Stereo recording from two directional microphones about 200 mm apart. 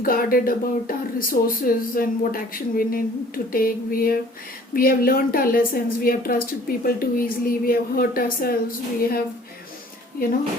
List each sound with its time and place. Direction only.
0.0 s speech: 45° left (ahead or behind)